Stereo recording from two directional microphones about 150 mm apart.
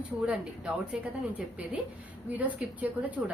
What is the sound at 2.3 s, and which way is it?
Speech, 10° right (ahead or behind).